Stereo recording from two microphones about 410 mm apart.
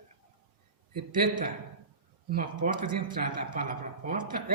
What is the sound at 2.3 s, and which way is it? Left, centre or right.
Speech, right.